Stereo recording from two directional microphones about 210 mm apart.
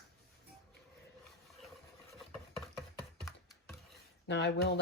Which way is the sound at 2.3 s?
5° left (ahead or behind).